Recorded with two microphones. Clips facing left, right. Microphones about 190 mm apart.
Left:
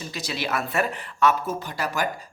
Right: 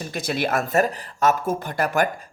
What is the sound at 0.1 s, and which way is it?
Speech, 50° right (ahead or behind).